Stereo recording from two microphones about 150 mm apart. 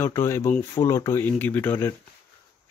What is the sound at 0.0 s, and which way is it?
Speech, 15° left (ahead or behind).